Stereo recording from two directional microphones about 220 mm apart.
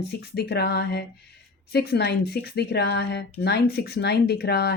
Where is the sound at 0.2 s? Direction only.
45° left (ahead or behind).